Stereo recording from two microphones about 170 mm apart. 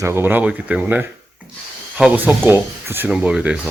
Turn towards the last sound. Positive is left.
turn(degrees=-5)  # may be behind; listen again after turning